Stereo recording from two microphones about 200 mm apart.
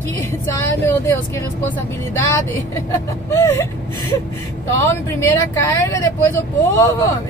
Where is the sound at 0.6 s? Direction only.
15° left (ahead or behind).